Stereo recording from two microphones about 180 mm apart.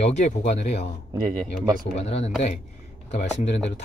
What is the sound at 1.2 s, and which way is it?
Speech, 25° right (ahead or behind).